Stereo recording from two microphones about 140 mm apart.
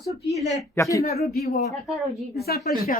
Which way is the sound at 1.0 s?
55° left (ahead or behind).